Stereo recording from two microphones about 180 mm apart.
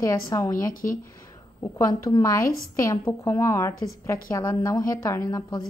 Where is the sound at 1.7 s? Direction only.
20° left (ahead or behind).